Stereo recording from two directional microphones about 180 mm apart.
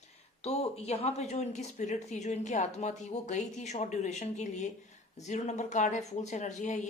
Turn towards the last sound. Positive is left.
turn(degrees=40)  # may be behind; listen again after turning